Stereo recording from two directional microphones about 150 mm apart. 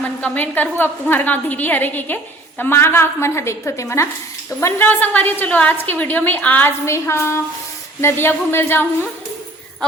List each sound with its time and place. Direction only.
0.0 s a woman's voice: 10° left (ahead or behind)